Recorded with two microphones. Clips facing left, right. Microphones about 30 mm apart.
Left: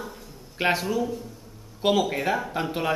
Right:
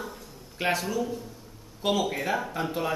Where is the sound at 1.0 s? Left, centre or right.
Centre.